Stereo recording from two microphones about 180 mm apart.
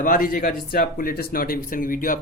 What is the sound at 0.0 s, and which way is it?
A man's voice, 50° left (ahead or behind).